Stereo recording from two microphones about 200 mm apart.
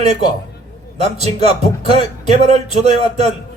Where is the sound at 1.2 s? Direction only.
30° right (ahead or behind).